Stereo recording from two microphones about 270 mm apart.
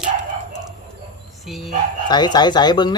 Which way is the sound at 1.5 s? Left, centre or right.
Centre.